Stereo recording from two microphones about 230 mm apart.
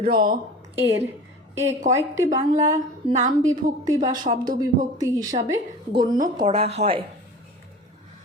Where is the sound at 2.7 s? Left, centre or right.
Right.